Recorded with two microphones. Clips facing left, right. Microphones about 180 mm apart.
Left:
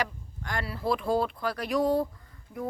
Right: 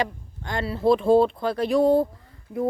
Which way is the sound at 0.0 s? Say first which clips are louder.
Right 5 dB; 25° right (ahead or behind).